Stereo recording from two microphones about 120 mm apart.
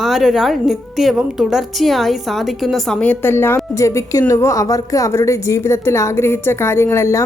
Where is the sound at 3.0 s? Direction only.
15° left (ahead or behind).